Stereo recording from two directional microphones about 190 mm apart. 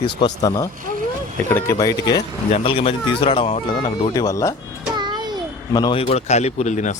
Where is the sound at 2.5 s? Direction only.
30° left (ahead or behind).